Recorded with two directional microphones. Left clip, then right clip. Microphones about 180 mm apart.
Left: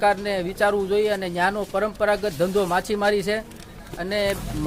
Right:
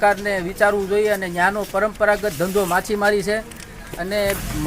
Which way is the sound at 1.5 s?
40° left (ahead or behind).